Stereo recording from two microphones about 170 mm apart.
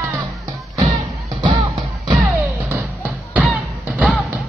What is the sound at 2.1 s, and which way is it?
Music, 10° right (ahead or behind).